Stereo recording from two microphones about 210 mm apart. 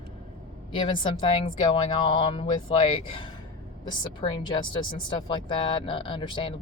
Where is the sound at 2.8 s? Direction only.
25° left (ahead or behind).